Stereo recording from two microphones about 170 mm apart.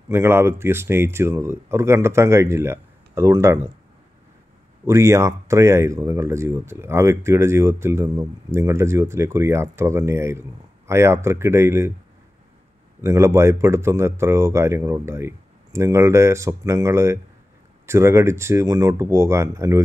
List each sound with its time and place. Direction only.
0.1 s speech: 15° right (ahead or behind)
4.8 s speech: 15° right (ahead or behind)
13.0 s speech: 15° right (ahead or behind)